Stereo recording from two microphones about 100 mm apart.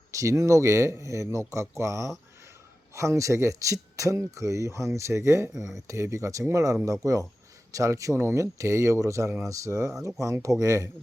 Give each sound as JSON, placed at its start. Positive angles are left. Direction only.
{"t": 0.1, "sound": "speech", "side_deg": -35}